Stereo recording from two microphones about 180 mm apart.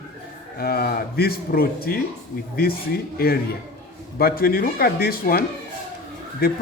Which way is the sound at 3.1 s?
55° left (ahead or behind).